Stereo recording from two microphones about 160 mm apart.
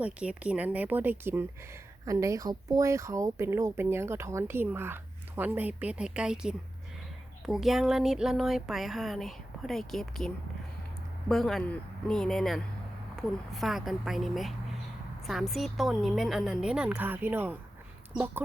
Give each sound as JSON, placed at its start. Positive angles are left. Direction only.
{"t": 0.0, "sound": "speech", "side_deg": -5}